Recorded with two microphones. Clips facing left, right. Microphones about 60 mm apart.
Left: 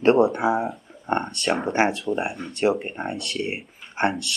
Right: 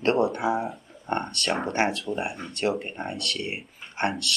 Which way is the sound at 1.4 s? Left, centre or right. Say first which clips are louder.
Left 3 dB; centre.